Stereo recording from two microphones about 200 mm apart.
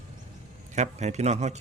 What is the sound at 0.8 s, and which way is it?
Speech, 35° right (ahead or behind).